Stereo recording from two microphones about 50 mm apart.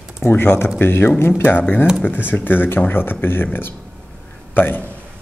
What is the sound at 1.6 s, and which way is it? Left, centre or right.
A man's voice, left.